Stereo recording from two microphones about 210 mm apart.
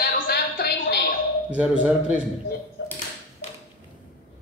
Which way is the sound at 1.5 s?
5° right (ahead or behind).